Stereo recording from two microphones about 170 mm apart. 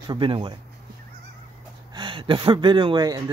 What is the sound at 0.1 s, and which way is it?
Speech, 30° right (ahead or behind).